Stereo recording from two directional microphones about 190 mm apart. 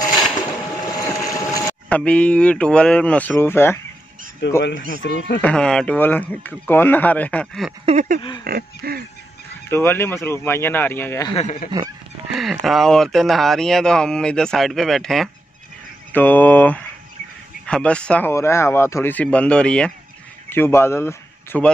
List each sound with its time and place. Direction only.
0.8 s boat: 20° left (ahead or behind)
1.9 s speech: 5° left (ahead or behind)
4.4 s speech: 65° left (ahead or behind)
5.4 s speech: 5° left (ahead or behind)
7.8 s a sound: 40° right (ahead or behind)
8.5 s a sound: 50° right (ahead or behind)
9.7 s speech: 10° left (ahead or behind)
11.3 s speech: 40° left (ahead or behind)
12.3 s speech: centre (ahead or behind)